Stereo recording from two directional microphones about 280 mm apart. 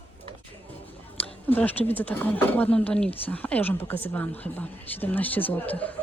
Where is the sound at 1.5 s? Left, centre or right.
Centre.